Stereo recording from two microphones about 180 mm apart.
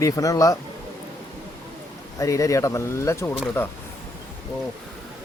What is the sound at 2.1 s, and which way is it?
Speech, 20° left (ahead or behind).